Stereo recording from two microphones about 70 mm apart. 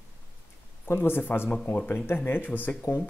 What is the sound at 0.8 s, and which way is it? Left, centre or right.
Speech, left.